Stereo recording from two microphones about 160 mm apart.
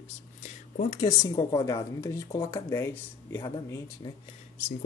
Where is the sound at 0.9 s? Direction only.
30° left (ahead or behind).